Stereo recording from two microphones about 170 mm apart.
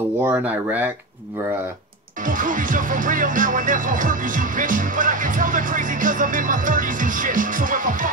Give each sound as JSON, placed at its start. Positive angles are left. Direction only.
{"t": 0.2, "sound": "speech", "side_deg": -10}
{"t": 2.2, "sound": "music", "side_deg": -50}